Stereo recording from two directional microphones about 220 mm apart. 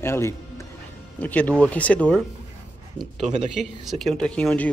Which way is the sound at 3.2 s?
30° right (ahead or behind).